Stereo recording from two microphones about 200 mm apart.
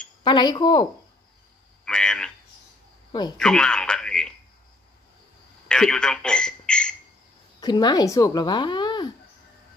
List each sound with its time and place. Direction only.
0.2 s speech: 20° left (ahead or behind)
1.9 s a sound: 5° left (ahead or behind)
3.1 s speech: 20° left (ahead or behind)
3.3 s speech: 5° left (ahead or behind)
5.7 s a man's voice: 5° left (ahead or behind)
7.6 s speech: 20° left (ahead or behind)